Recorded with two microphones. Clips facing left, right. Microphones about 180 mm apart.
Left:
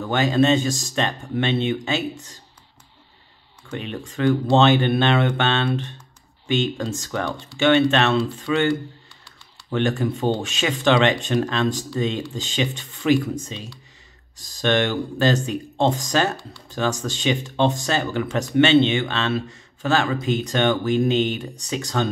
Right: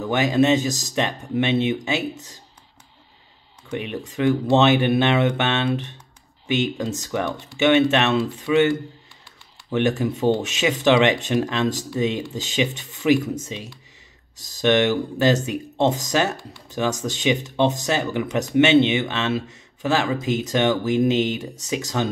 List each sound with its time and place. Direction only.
0.1 s speech: 20° right (ahead or behind)
3.7 s speech: 20° right (ahead or behind)